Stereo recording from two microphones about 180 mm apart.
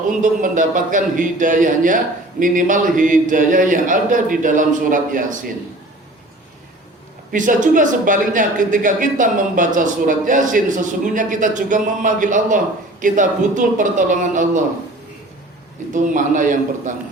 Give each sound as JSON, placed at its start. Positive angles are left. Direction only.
{"t": 0.2, "sound": "speech", "side_deg": -45}
{"t": 7.3, "sound": "speech", "side_deg": -45}
{"t": 15.9, "sound": "speech", "side_deg": -45}